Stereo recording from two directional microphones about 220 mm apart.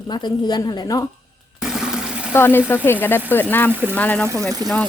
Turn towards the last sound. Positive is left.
turn(degrees=-20)  # may be behind; listen again after turning